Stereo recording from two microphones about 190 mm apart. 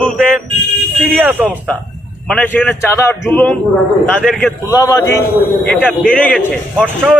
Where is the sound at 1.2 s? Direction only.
10° right (ahead or behind).